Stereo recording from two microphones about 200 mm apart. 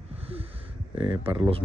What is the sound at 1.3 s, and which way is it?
Speech, 25° right (ahead or behind).